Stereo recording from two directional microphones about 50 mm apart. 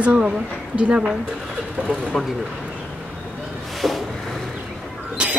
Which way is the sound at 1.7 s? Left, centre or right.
Centre.